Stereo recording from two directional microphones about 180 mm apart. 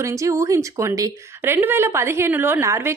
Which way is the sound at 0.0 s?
15° right (ahead or behind).